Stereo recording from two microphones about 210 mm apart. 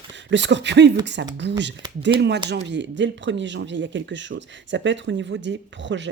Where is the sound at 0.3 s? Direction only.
60° right (ahead or behind).